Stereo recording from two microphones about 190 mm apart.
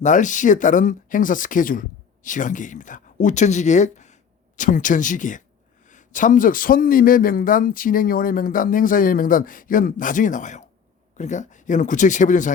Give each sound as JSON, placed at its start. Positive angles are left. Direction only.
{"t": 0.0, "sound": "a man's voice", "side_deg": 40}